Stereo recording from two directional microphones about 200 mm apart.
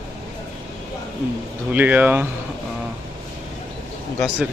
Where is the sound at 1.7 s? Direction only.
10° right (ahead or behind).